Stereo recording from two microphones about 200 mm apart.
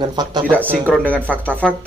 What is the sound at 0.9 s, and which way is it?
Speech, 5° left (ahead or behind).